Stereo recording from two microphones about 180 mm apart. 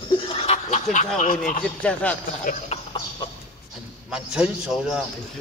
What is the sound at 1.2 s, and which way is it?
Speech, 45° left (ahead or behind).